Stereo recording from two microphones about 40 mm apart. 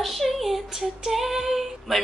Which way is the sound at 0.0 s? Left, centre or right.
Centre.